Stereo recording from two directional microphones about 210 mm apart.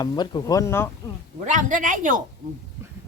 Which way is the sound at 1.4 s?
35° right (ahead or behind).